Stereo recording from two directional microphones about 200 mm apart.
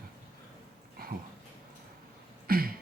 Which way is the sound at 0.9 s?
50° right (ahead or behind).